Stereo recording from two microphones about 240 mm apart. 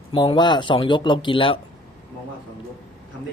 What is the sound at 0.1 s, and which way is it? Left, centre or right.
Speech, centre.